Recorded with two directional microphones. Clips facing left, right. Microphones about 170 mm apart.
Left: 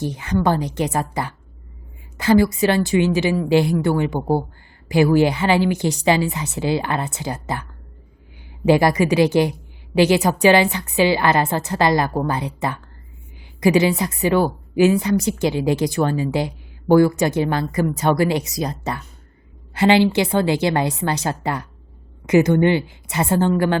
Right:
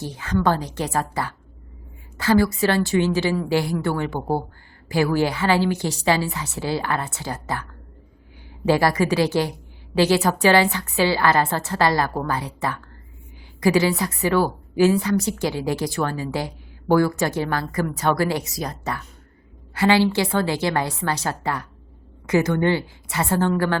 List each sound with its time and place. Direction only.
0.0 s a woman's voice: 15° left (ahead or behind)
8.6 s a woman's voice: 20° left (ahead or behind)